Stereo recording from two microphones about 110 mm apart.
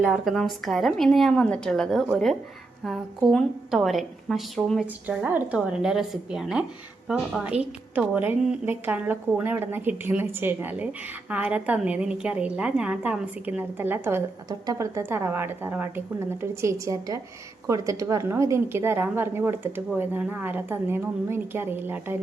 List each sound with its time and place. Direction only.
0.1 s a woman's voice: centre (ahead or behind)
5.0 s a woman's voice: 15° right (ahead or behind)